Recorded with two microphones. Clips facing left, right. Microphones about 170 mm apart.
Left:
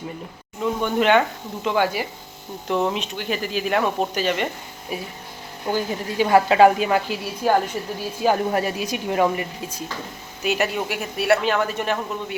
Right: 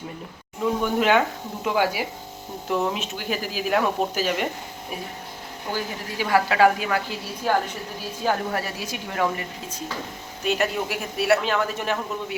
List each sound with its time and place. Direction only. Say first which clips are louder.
0.6 s speech: left 1 dB; 5° right (ahead or behind)
5.7 s a woman's voice: left 6 dB; 25° left (ahead or behind)
10.4 s speech: left 1 dB; 5° left (ahead or behind)